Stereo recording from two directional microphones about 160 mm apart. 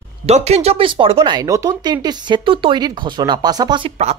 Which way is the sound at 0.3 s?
40° right (ahead or behind).